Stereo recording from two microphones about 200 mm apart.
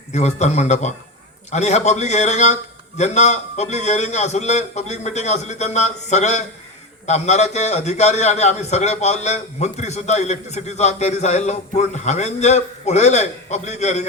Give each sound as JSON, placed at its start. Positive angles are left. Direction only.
{"t": 0.1, "sound": "a man's voice", "side_deg": 35}